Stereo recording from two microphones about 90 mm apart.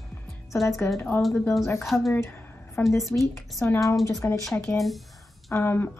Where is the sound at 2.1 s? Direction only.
30° left (ahead or behind).